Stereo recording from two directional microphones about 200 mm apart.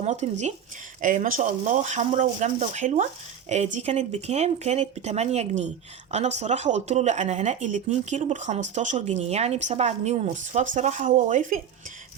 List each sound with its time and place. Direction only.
0.0 s speech: 35° right (ahead or behind)